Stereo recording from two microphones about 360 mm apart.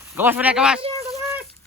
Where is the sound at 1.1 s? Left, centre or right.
Centre.